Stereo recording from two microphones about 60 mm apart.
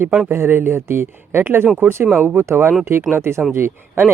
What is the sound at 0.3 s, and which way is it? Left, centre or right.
Speech, right.